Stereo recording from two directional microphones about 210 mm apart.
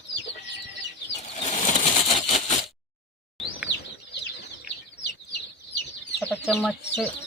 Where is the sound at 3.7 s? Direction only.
55° left (ahead or behind).